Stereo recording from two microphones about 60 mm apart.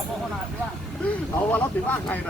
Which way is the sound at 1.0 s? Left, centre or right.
Left.